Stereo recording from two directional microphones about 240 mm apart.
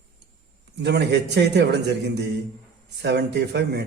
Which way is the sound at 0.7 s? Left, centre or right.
Right.